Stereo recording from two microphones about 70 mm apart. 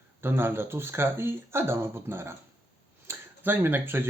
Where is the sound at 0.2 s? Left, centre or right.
Right.